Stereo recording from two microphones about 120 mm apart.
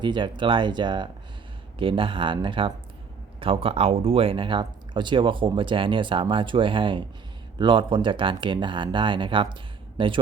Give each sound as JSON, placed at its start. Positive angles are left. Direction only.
{"t": 0.0, "sound": "speech", "side_deg": -40}